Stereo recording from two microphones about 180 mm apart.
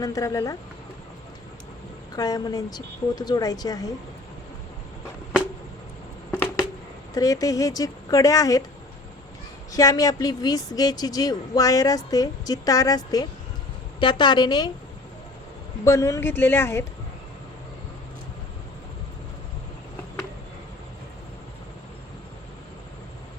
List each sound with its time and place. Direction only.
0.0 s speech: 20° left (ahead or behind)
2.1 s speech: 20° left (ahead or behind)
7.1 s speech: 20° left (ahead or behind)
9.7 s speech: 20° left (ahead or behind)
15.8 s speech: 15° left (ahead or behind)